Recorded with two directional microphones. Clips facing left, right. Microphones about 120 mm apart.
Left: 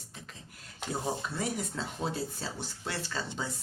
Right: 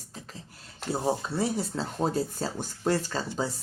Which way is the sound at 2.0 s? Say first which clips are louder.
Right 8 dB; 45° right (ahead or behind).